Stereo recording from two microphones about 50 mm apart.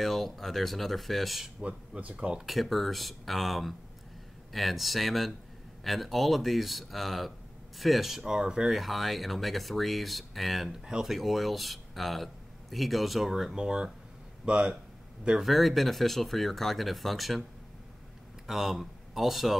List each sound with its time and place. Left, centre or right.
0.0 s speech: centre
1.6 s speech: right
2.4 s speech: centre
8.7 s speech: centre
10.7 s speech: centre
11.1 s speech: centre
15.4 s speech: centre
18.5 s speech: centre